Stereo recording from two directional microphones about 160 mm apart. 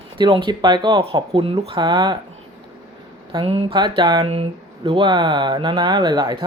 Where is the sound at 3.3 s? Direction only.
35° right (ahead or behind).